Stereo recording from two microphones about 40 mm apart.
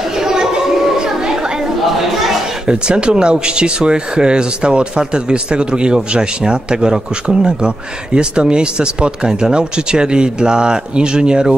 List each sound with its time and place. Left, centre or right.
0.1 s chatter: centre
0.9 s music: centre
2.6 s speech: right